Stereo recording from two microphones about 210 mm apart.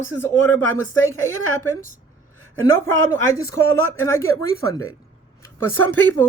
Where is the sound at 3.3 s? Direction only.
15° left (ahead or behind).